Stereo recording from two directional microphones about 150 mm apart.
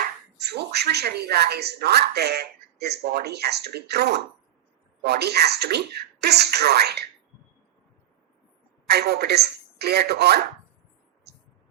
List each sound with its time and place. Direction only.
0.3 s speech: 90° right
8.9 s speech: 90° right
11.3 s a sound: 90° right